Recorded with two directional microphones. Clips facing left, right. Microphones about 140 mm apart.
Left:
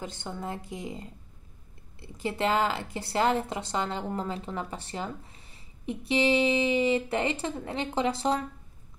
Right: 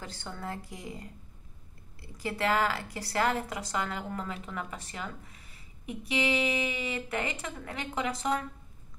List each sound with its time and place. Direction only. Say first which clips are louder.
0.0 s a woman's voice: left 4 dB; 20° left (ahead or behind)